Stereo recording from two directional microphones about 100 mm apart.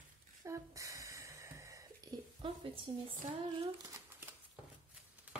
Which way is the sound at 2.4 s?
65° right (ahead or behind).